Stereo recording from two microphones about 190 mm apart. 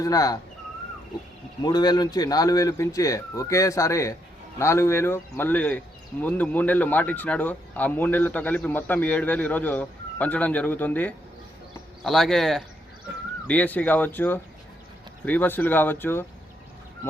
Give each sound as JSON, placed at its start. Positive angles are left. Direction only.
{"t": 0.0, "sound": "speech", "side_deg": 20}
{"t": 1.6, "sound": "speech", "side_deg": 20}